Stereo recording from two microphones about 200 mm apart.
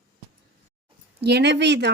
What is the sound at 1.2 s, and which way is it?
Speech, 55° right (ahead or behind).